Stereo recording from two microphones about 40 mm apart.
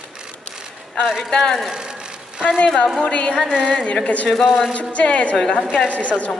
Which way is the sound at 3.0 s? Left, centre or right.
Left.